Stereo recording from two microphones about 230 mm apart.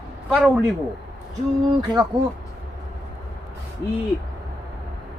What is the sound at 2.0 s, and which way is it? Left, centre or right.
Speech, centre.